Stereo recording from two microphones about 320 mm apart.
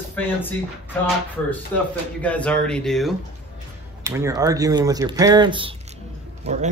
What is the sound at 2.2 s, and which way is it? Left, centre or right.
Speech, centre.